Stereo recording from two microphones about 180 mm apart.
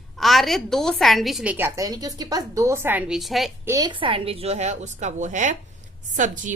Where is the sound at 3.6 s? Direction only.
20° right (ahead or behind).